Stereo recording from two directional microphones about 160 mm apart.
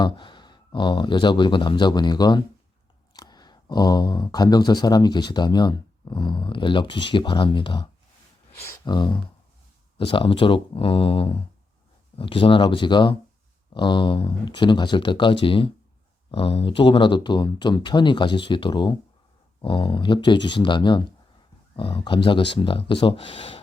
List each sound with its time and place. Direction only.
0.0 s speech: 30° left (ahead or behind)